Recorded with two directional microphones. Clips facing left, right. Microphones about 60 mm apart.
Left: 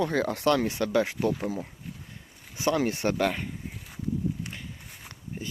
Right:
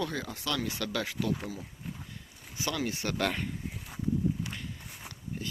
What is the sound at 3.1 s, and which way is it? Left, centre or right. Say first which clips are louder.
Speech: left 4 dB; centre.